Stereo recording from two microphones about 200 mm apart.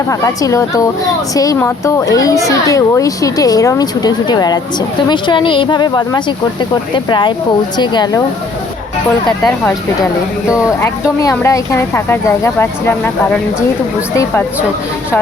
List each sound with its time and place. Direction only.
0.1 s a woman's voice: 15° left (ahead or behind)
11.2 s a woman's voice: 15° left (ahead or behind)